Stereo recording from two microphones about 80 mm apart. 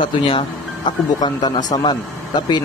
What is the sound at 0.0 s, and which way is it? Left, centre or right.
Speech, left.